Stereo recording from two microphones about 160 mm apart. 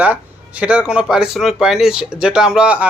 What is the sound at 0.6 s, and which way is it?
Speech, 5° right (ahead or behind).